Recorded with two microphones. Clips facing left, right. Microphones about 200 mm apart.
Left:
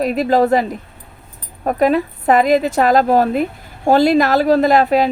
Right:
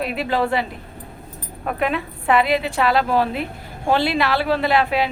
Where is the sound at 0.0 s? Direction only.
40° left (ahead or behind).